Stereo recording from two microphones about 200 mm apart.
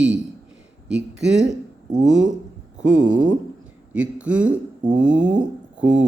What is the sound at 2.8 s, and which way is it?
Speech, 70° right (ahead or behind).